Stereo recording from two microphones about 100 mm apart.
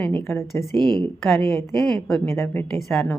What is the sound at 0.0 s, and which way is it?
Speech, 15° left (ahead or behind).